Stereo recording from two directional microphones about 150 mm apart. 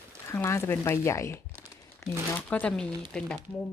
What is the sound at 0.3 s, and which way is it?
A woman's voice, 20° left (ahead or behind).